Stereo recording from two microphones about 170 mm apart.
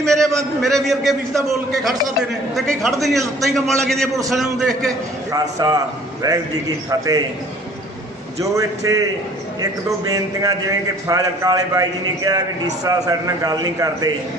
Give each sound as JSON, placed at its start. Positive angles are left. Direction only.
{"t": 0.0, "sound": "a man's voice", "side_deg": 0}
{"t": 5.3, "sound": "a man's voice", "side_deg": -20}
{"t": 8.4, "sound": "a man's voice", "side_deg": -20}
{"t": 10.1, "sound": "a man's voice", "side_deg": -20}